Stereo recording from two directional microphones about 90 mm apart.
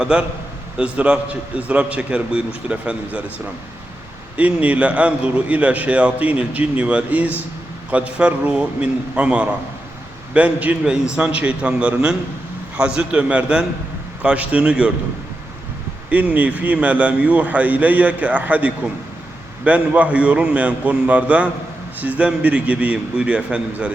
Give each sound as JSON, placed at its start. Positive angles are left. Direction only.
{"t": 0.0, "sound": "a man's voice", "side_deg": -10}
{"t": 4.4, "sound": "a man's voice", "side_deg": -15}
{"t": 16.0, "sound": "a man's voice", "side_deg": -15}